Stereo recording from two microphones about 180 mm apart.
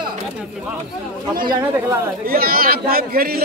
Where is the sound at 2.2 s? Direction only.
55° right (ahead or behind).